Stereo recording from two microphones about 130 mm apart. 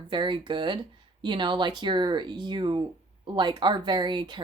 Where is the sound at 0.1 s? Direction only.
35° right (ahead or behind).